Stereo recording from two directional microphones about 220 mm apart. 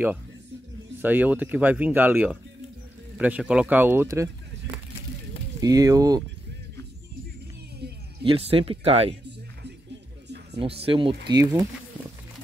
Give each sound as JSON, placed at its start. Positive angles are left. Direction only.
{"t": 1.0, "sound": "speech", "side_deg": -10}
{"t": 5.6, "sound": "speech", "side_deg": -15}
{"t": 8.2, "sound": "speech", "side_deg": -25}
{"t": 10.2, "sound": "music", "side_deg": -50}
{"t": 10.8, "sound": "speech", "side_deg": -25}